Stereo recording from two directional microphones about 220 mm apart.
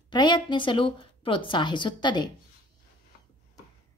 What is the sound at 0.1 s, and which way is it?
A woman's voice, 20° left (ahead or behind).